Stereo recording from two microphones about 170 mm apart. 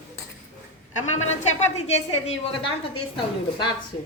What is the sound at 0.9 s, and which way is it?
A woman's voice, 45° left (ahead or behind).